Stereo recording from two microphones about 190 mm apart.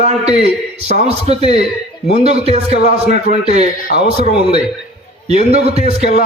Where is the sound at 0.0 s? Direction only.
35° right (ahead or behind).